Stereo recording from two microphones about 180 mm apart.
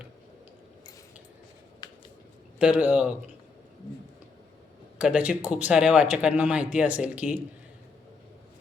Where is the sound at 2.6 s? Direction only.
5° right (ahead or behind).